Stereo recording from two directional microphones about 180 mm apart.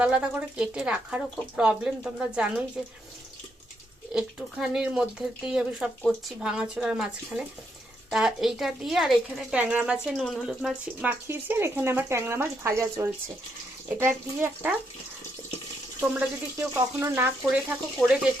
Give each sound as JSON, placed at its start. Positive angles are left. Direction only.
{"t": 0.0, "sound": "speech", "side_deg": -5}
{"t": 4.1, "sound": "speech", "side_deg": -5}
{"t": 16.0, "sound": "speech", "side_deg": -10}